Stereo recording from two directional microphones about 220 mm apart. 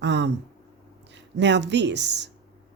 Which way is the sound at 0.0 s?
50° right (ahead or behind).